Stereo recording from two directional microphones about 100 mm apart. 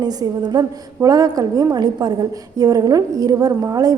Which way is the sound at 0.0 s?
40° right (ahead or behind).